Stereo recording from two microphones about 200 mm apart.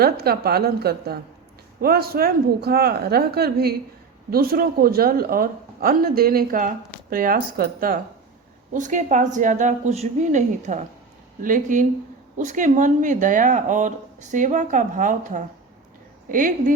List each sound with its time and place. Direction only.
0.0 s speech: 50° right (ahead or behind)